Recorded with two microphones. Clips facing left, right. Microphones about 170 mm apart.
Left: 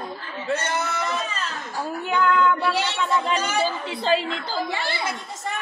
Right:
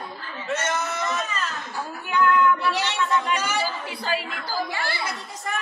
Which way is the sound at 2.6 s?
30° left (ahead or behind).